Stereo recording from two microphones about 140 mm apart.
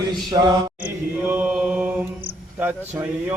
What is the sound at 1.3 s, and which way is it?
Mantra, 10° right (ahead or behind).